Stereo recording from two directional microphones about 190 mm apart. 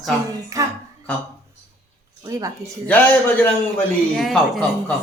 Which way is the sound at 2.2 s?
15° right (ahead or behind).